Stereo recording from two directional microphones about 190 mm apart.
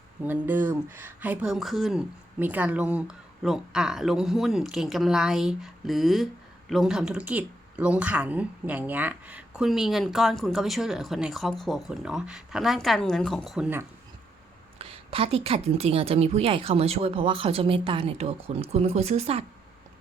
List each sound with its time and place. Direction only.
0.3 s speech: 10° right (ahead or behind)
14.8 s a woman's voice: 30° right (ahead or behind)